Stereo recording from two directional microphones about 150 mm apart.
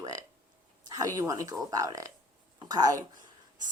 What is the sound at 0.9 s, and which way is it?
Speech, 25° right (ahead or behind).